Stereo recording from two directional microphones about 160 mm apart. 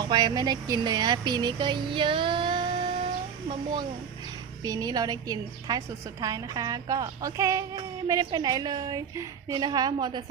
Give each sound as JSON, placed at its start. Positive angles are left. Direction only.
{"t": 0.0, "sound": "a woman's voice", "side_deg": -30}